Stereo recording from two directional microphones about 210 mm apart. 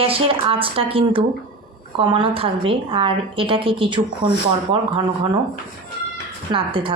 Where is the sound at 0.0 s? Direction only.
25° right (ahead or behind).